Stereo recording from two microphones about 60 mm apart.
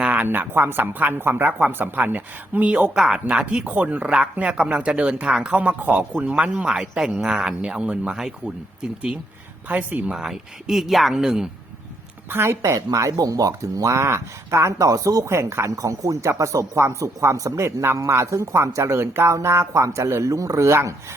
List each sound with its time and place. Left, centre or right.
0.0 s speech: right
2.9 s speech: centre
6.3 s speech: centre
9.6 s speech: right
10.1 s speech: centre
12.3 s speech: right
14.0 s speech: right
14.8 s speech: right
15.2 s speech: right
15.7 s speech: right